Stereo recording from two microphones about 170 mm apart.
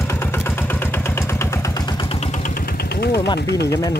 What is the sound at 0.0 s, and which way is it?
Vehicle, 15° left (ahead or behind).